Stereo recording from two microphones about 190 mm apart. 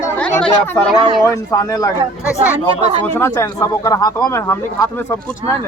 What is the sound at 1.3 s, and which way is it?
Speech, 15° left (ahead or behind).